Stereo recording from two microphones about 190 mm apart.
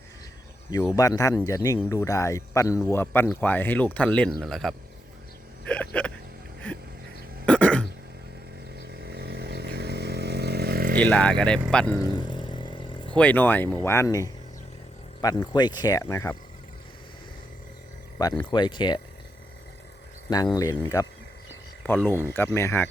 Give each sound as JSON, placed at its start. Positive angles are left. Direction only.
{"t": 0.7, "sound": "speech", "side_deg": 20}
{"t": 5.6, "sound": "hiccup", "side_deg": 5}
{"t": 7.4, "sound": "throat clearing", "side_deg": 5}
{"t": 8.9, "sound": "motorcycle", "side_deg": -55}
{"t": 10.9, "sound": "speech", "side_deg": 5}
{"t": 12.0, "sound": "vehicle", "side_deg": 25}
{"t": 13.1, "sound": "speech", "side_deg": 10}
{"t": 18.2, "sound": "speech", "side_deg": 20}
{"t": 20.3, "sound": "speech", "side_deg": 20}